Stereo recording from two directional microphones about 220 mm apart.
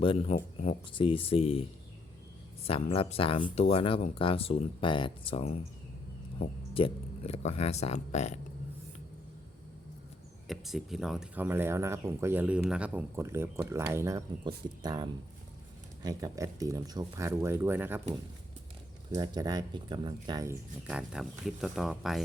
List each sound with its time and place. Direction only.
0.0 s speech: 25° left (ahead or behind)
2.6 s speech: 25° left (ahead or behind)
10.4 s speech: centre (ahead or behind)
19.1 s speech: 15° right (ahead or behind); by 22.2 s centre (ahead or behind)